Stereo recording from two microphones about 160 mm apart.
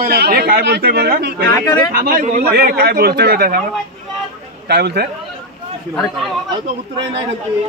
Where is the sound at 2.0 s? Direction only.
55° right (ahead or behind).